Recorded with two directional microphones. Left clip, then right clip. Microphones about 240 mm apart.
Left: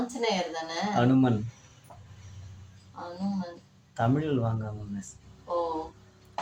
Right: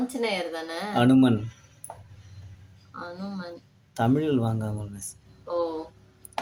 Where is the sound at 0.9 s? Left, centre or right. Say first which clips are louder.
Right 5 dB; right.